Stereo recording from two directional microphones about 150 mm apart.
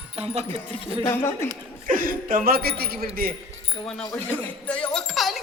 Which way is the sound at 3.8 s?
5° left (ahead or behind).